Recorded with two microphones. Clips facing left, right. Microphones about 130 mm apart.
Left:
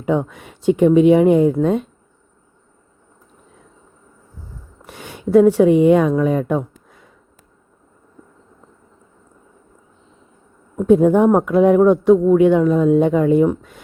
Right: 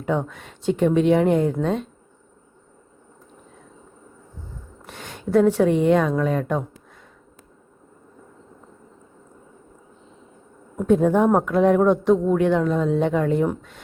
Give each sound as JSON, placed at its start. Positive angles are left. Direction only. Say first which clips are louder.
{"t": 0.0, "sound": "speech", "louder": "left 5 dB", "side_deg": 10}
{"t": 4.9, "sound": "speech", "louder": "left 6 dB", "side_deg": 10}
{"t": 10.8, "sound": "speech", "louder": "left 5 dB", "side_deg": 10}